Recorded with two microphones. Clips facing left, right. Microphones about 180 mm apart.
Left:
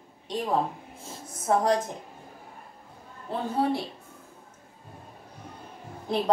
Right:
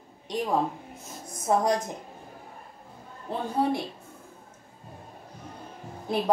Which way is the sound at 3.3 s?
15° right (ahead or behind).